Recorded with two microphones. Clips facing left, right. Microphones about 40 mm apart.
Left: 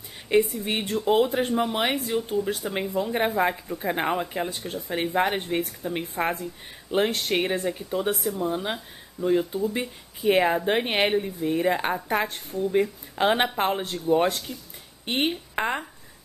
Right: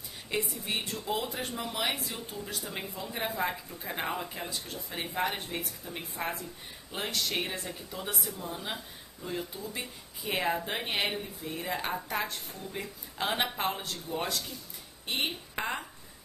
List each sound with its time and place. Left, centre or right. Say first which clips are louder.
0.4 s speech: left 10 dB; left